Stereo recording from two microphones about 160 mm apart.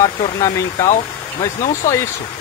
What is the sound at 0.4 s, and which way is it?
Speech, 20° left (ahead or behind).